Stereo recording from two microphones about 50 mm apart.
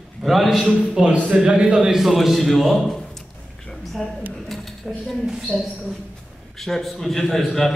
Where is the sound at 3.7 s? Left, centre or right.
Centre.